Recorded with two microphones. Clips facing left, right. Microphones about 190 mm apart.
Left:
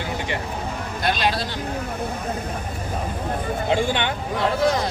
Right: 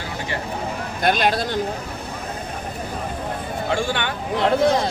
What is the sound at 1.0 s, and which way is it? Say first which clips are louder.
Speech: right 4 dB; 50° right (ahead or behind).